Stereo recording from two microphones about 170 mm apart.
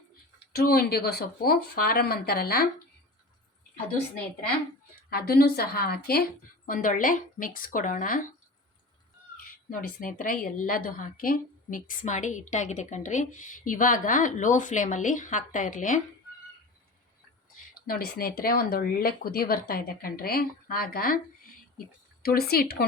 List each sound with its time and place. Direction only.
0.5 s speech: 65° left (ahead or behind)
5.0 s speech: 65° left (ahead or behind)
6.7 s a woman's voice: 50° left (ahead or behind)
9.5 s a woman's voice: 55° left (ahead or behind)
17.8 s speech: 60° left (ahead or behind)
22.2 s speech: 65° left (ahead or behind)